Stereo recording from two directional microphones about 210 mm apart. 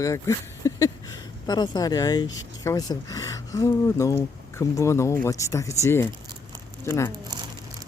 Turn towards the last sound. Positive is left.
turn(degrees=10)  # may be behind; listen again after turning